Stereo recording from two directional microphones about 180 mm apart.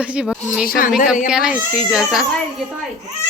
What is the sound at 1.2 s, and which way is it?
A woman's voice, 5° right (ahead or behind).